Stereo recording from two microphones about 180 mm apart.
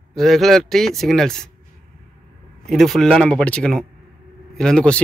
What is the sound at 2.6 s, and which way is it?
Speech, centre (ahead or behind).